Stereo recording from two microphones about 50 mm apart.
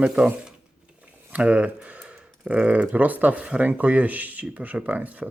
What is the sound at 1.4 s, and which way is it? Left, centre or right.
Speech, right.